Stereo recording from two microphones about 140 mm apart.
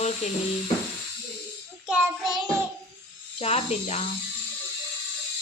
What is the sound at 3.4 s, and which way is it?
Speech, 50° left (ahead or behind).